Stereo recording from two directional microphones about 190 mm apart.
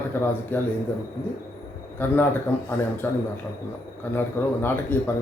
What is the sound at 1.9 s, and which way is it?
A man's voice, 10° left (ahead or behind).